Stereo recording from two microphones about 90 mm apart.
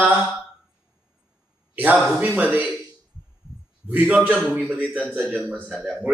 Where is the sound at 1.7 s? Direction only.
20° right (ahead or behind).